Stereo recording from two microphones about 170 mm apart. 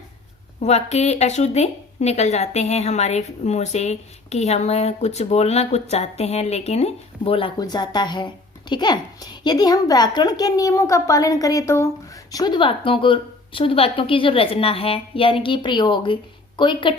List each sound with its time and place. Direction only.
0.6 s a woman's voice: 40° left (ahead or behind)